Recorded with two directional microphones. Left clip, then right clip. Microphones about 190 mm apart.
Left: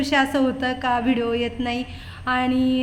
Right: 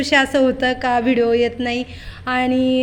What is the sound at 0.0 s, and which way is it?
A woman's voice, 20° right (ahead or behind).